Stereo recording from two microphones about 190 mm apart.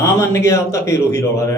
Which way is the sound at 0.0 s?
15° left (ahead or behind).